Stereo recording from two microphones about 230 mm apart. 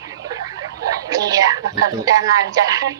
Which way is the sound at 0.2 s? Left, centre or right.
Centre.